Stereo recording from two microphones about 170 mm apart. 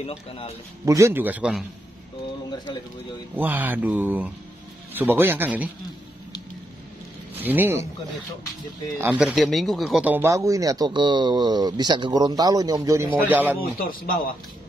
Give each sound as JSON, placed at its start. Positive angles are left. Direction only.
{"t": 0.0, "sound": "speech", "side_deg": 35}
{"t": 0.8, "sound": "speech", "side_deg": -15}
{"t": 3.3, "sound": "speech", "side_deg": -10}
{"t": 7.3, "sound": "speech", "side_deg": -10}
{"t": 8.9, "sound": "speech", "side_deg": -15}
{"t": 9.2, "sound": "speech", "side_deg": 0}
{"t": 13.6, "sound": "speech", "side_deg": 60}